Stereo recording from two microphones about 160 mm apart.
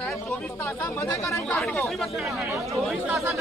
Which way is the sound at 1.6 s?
5° left (ahead or behind).